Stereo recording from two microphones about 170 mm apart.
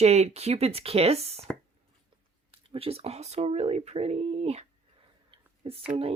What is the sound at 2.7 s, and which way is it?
Speech, 35° right (ahead or behind).